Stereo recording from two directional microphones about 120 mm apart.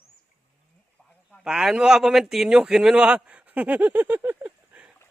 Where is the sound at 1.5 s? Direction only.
5° right (ahead or behind).